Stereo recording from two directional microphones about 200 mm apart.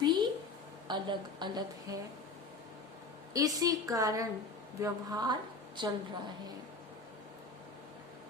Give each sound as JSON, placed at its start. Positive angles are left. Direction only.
{"t": 0.0, "sound": "a sound", "side_deg": -20}
{"t": 0.9, "sound": "speech", "side_deg": -20}
{"t": 3.3, "sound": "a woman's voice", "side_deg": -20}